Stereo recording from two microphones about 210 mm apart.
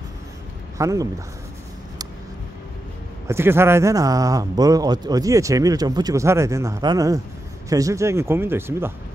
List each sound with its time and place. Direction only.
0.7 s speech: 15° right (ahead or behind)
3.3 s a man's voice: 10° right (ahead or behind)